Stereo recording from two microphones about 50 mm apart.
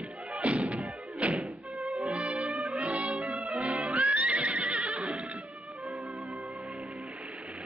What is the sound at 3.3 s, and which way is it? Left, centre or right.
Music, centre.